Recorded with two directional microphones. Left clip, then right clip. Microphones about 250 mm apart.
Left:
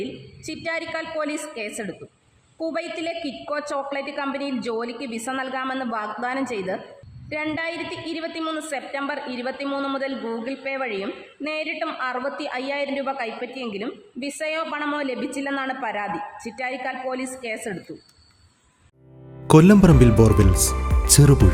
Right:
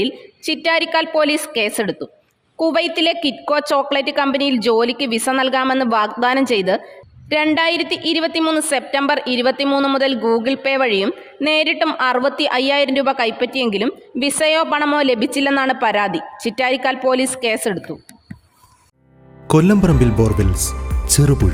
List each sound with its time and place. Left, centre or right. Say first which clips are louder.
0.0 s a woman's voice: right 11 dB; right
19.5 s speech: even; centre